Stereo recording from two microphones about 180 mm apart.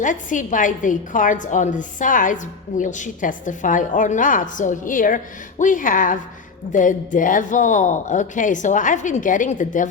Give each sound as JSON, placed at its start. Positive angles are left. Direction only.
{"t": 0.0, "sound": "a woman's voice", "side_deg": 45}